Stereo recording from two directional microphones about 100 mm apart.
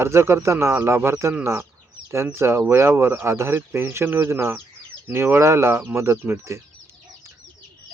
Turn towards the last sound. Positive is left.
turn(degrees=-25)  # may be behind; listen again after turning